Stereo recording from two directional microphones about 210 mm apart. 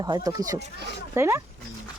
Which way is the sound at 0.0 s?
15° right (ahead or behind).